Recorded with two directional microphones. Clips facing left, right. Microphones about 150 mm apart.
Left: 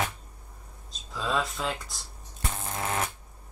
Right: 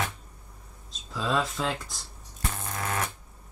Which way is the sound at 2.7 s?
25° left (ahead or behind).